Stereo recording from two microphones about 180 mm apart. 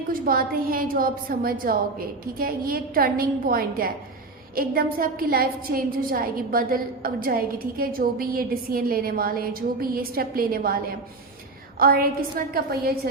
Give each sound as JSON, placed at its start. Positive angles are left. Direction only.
{"t": 0.1, "sound": "a woman's voice", "side_deg": -55}
{"t": 11.8, "sound": "a woman's voice", "side_deg": -55}